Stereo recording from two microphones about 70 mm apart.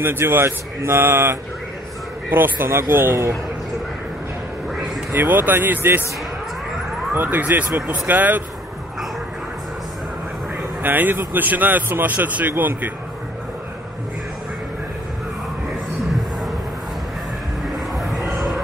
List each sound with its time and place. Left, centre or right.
0.0 s speech: right
5.1 s speech: right
7.2 s speech: right
10.8 s speech: right